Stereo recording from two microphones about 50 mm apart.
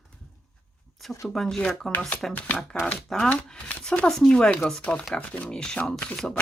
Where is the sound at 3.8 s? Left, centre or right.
Left.